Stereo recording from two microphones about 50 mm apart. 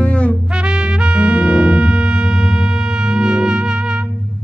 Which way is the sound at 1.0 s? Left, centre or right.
Right.